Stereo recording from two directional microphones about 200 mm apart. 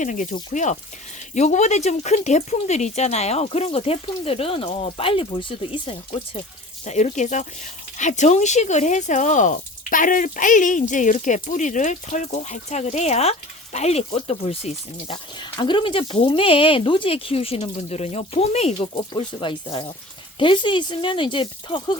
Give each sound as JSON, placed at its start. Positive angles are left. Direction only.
{"t": 0.0, "sound": "speech", "side_deg": 40}